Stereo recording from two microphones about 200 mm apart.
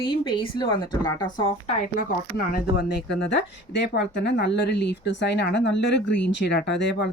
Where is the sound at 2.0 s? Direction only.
45° left (ahead or behind).